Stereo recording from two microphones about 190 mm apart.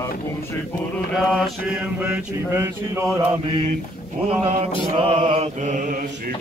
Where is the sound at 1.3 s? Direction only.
5° right (ahead or behind).